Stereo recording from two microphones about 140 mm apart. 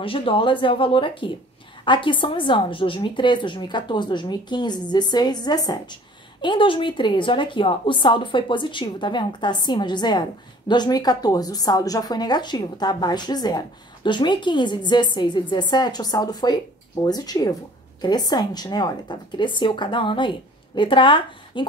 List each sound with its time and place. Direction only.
0.0 s a woman's voice: 40° left (ahead or behind)